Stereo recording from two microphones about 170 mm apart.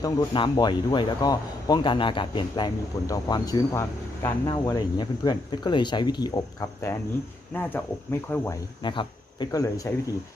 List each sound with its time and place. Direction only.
0.0 s speech: 25° left (ahead or behind)
7.5 s speech: 10° left (ahead or behind)
8.8 s speech: 30° left (ahead or behind)